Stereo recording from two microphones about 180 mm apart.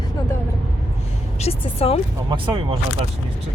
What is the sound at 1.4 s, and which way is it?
Speech, 35° left (ahead or behind).